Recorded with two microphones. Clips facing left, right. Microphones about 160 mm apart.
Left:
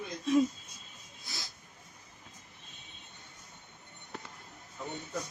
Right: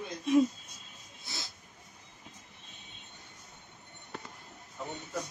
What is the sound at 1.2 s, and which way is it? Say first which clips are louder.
Dog: right 2 dB; 25° right (ahead or behind).